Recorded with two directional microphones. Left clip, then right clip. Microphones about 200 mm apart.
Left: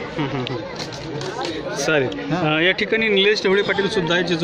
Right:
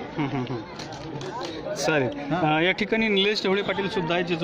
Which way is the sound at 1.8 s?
50° right (ahead or behind).